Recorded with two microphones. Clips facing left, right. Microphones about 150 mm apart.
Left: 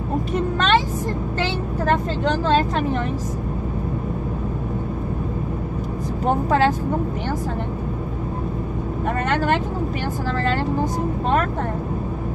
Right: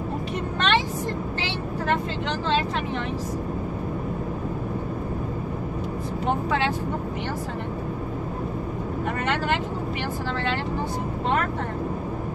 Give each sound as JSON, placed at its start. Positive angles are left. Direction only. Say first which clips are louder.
{"t": 0.6, "sound": "vehicle", "louder": "left 2 dB", "side_deg": 45}
{"t": 6.2, "sound": "speech", "louder": "left 6 dB", "side_deg": 40}